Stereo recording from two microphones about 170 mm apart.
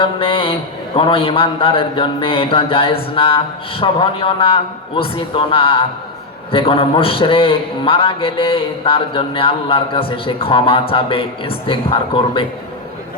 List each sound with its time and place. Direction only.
0.0 s a man's voice: 30° left (ahead or behind)